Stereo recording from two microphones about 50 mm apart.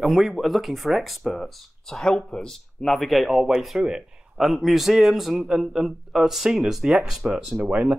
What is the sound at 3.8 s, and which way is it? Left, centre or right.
Speech, centre.